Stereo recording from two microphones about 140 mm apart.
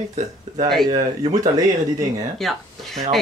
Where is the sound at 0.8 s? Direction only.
30° right (ahead or behind).